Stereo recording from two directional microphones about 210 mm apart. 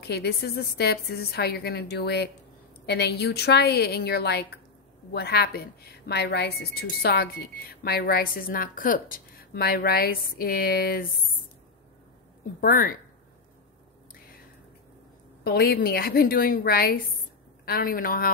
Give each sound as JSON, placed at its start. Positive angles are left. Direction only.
{"t": 0.0, "sound": "a woman's voice", "side_deg": 50}
{"t": 12.5, "sound": "a woman's voice", "side_deg": 45}
{"t": 15.4, "sound": "a woman's voice", "side_deg": 45}